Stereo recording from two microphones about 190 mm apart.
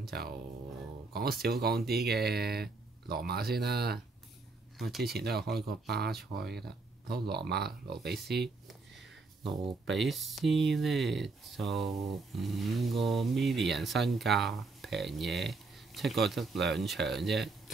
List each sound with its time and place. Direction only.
0.0 s speech: 55° right (ahead or behind)
1.4 s speech: 55° right (ahead or behind)
4.7 s speech: centre (ahead or behind)
5.0 s speech: 55° right (ahead or behind)
8.4 s a sound: centre (ahead or behind)
9.8 s speech: centre (ahead or behind)